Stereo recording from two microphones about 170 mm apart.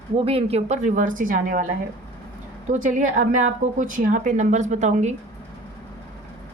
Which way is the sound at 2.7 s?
45° right (ahead or behind).